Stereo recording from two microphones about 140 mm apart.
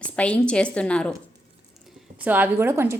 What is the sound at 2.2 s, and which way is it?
Speech, 10° right (ahead or behind).